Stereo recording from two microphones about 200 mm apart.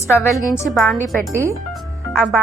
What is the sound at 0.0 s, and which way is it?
Speech, 15° left (ahead or behind).